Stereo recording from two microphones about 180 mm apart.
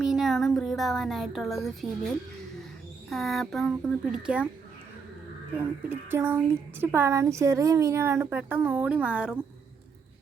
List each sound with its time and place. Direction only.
0.0 s a woman's voice: centre (ahead or behind)
6.1 s speech: 10° right (ahead or behind)